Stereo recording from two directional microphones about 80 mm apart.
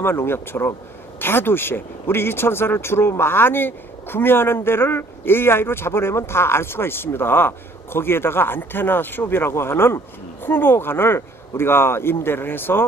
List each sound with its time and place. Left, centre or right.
0.0 s speech: left